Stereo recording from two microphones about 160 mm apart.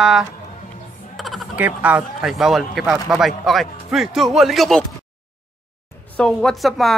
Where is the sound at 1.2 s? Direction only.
Centre (ahead or behind).